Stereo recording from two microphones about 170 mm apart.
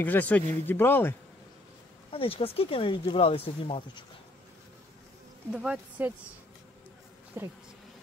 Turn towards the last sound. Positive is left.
turn(degrees=-15)  # may be behind; listen again after turning